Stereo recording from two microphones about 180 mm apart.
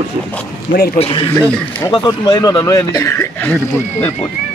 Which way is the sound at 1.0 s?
30° left (ahead or behind).